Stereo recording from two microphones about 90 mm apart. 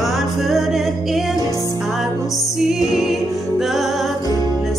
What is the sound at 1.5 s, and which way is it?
Music, 40° left (ahead or behind).